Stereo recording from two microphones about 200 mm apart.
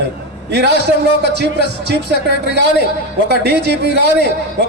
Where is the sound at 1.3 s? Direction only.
55° right (ahead or behind).